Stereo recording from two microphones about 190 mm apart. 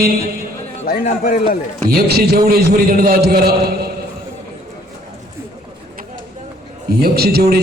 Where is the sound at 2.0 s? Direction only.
55° right (ahead or behind).